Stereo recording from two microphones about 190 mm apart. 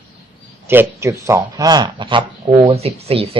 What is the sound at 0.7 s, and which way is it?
Speech, 15° right (ahead or behind).